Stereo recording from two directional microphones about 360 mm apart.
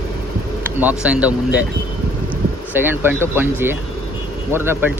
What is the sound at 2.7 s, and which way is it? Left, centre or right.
Speech, centre.